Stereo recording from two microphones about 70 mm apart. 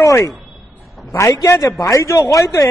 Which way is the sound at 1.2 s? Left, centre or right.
Left.